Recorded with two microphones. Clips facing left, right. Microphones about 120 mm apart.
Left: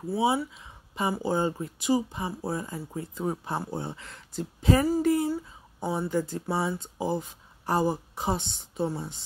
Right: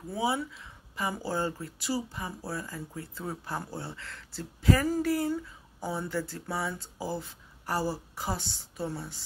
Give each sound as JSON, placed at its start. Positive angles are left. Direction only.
{"t": 0.1, "sound": "speech", "side_deg": 25}
{"t": 0.5, "sound": "a sound", "side_deg": 20}
{"t": 1.2, "sound": "speech", "side_deg": 20}